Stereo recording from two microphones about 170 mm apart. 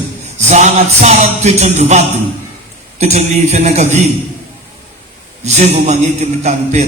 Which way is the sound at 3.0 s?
40° right (ahead or behind).